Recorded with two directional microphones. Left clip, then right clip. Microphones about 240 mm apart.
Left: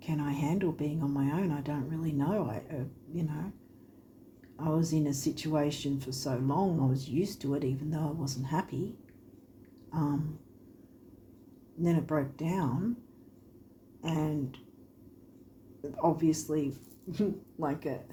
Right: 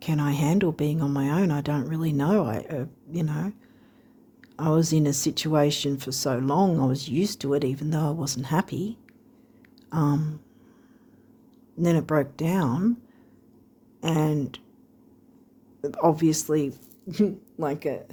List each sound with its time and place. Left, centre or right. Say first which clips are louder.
0.0 s speech: right 7 dB; right
4.5 s speech: right 8 dB; right
9.9 s speech: right 7 dB; right
11.8 s speech: right 8 dB; right
14.0 s speech: right 8 dB; right
15.8 s speech: right 7 dB; right